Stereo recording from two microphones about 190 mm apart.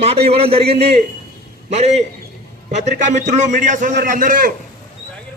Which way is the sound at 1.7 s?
35° right (ahead or behind).